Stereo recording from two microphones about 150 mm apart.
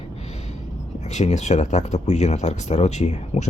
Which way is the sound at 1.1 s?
50° left (ahead or behind).